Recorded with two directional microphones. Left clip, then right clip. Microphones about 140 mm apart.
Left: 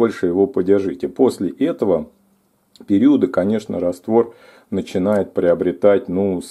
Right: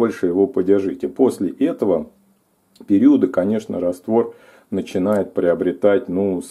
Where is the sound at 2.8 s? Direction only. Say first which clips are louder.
Right 1 dB; 10° left (ahead or behind).